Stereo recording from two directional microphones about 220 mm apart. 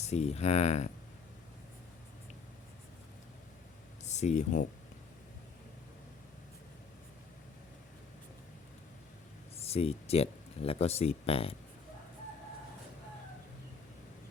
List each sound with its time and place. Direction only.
0.0 s speech: 30° left (ahead or behind)
4.0 s speech: 30° left (ahead or behind)
9.6 s speech: 25° left (ahead or behind)